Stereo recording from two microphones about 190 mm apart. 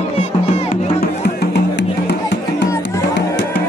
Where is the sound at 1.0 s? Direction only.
60° left (ahead or behind).